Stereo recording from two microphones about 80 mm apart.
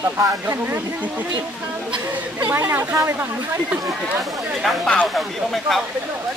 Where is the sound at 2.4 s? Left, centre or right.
Right.